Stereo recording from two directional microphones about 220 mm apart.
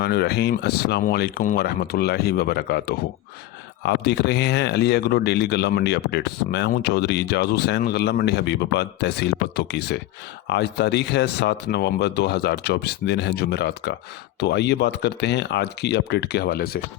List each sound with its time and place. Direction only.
0.0 s speech: 45° left (ahead or behind)